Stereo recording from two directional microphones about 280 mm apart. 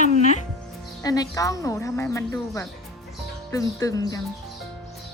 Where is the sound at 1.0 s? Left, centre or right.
Centre.